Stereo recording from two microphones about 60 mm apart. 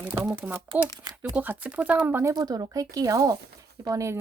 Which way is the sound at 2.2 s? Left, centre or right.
Right.